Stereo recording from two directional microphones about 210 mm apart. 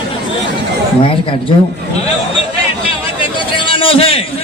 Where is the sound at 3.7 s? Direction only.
25° left (ahead or behind).